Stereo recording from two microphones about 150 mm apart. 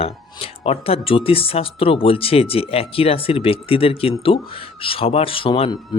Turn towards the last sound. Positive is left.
turn(degrees=35)  # may be behind; listen again after turning